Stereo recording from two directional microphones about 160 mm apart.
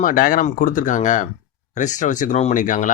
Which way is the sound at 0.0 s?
60° left (ahead or behind).